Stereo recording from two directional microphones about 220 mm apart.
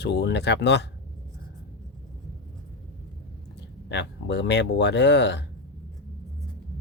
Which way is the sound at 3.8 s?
50° left (ahead or behind).